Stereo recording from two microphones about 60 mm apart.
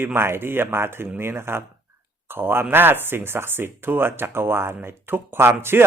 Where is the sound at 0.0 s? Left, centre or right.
Right.